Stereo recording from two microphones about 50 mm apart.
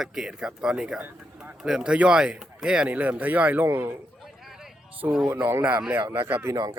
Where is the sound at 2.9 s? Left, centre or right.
Right.